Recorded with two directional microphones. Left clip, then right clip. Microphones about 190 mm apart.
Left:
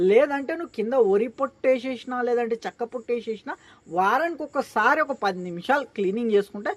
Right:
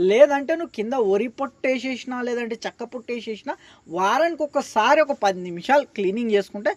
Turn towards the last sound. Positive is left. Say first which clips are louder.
# right 1 dB
turn(degrees=-25)  # may be behind; listen again after turning